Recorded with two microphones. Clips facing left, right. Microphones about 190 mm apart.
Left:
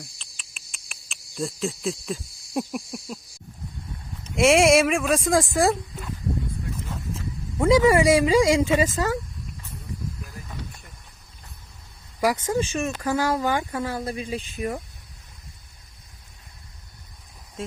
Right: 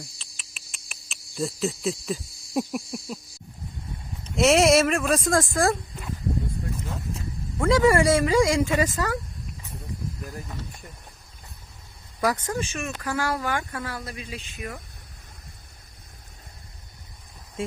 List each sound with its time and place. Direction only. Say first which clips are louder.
0.2 s cricket: right 1 dB; centre (ahead or behind)
4.2 s speech: left 1 dB; centre (ahead or behind)
5.3 s speech: left 3 dB; 15° left (ahead or behind)
7.6 s speech: left 2 dB; 20° left (ahead or behind)
12.2 s speech: left 2 dB; 15° left (ahead or behind)
12.5 s speech: left 5 dB; 30° left (ahead or behind)